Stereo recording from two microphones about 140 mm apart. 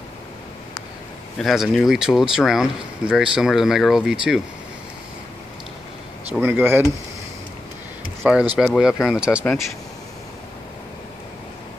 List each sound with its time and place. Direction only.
1.4 s speech: centre (ahead or behind)
6.4 s speech: 15° right (ahead or behind)
8.2 s speech: 5° right (ahead or behind)